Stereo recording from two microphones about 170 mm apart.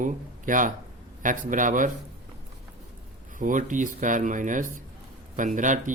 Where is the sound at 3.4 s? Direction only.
50° right (ahead or behind).